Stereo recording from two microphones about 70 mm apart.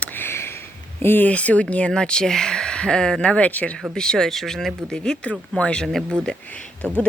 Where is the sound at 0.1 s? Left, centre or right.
Left.